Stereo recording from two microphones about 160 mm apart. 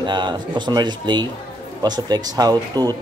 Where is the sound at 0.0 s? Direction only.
30° right (ahead or behind).